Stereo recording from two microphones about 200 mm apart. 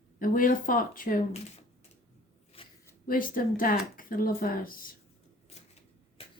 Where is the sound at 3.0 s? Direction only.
45° left (ahead or behind).